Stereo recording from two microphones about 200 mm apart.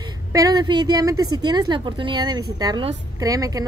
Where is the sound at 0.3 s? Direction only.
20° right (ahead or behind).